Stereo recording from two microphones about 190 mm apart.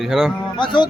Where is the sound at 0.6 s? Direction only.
25° left (ahead or behind).